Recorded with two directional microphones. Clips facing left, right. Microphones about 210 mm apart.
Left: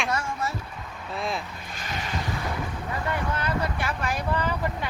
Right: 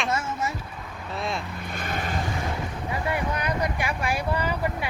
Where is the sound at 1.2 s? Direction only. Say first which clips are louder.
Even; centre (ahead or behind).